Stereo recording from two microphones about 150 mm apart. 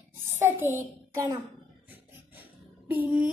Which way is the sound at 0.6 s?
20° right (ahead or behind).